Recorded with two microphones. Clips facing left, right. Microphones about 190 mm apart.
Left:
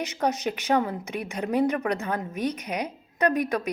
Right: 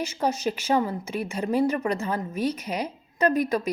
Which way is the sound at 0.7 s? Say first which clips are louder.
Even; 5° right (ahead or behind).